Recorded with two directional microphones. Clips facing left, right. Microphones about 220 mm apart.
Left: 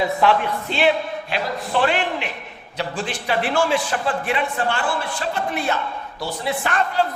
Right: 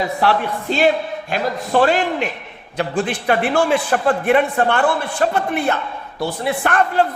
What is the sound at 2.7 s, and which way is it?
A man's voice, 55° right (ahead or behind).